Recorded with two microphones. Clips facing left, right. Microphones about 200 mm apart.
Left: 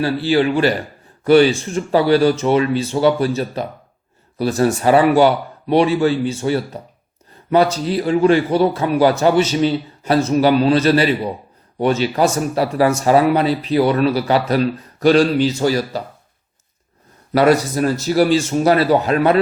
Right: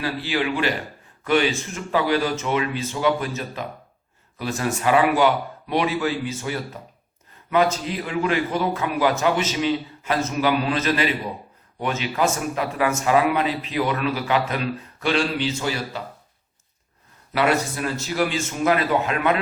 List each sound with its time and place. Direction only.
0.0 s speech: 35° left (ahead or behind)
17.3 s speech: 40° left (ahead or behind)